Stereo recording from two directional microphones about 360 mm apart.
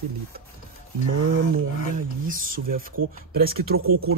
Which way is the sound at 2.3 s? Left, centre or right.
Right.